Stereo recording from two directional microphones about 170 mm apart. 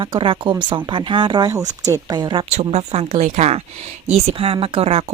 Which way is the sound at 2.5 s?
40° right (ahead or behind).